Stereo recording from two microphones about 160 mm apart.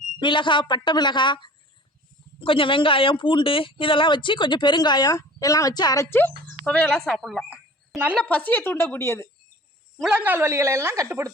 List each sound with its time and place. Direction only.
0.2 s a woman's voice: 30° left (ahead or behind)
10.0 s a woman's voice: 10° right (ahead or behind)